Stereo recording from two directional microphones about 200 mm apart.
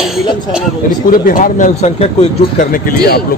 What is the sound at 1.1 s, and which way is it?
A man's voice, 40° left (ahead or behind).